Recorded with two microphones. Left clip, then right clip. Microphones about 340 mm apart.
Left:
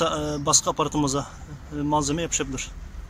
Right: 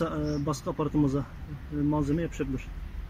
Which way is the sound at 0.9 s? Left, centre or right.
Left.